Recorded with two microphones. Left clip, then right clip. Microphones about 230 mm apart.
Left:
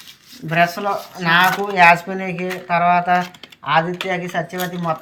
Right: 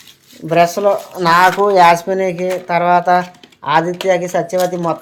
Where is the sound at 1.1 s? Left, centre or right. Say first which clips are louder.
Right 3 dB; right.